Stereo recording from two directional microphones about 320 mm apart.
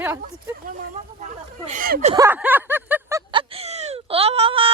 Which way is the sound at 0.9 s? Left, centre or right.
Right.